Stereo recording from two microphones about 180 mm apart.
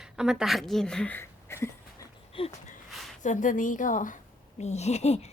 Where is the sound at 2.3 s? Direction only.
30° left (ahead or behind).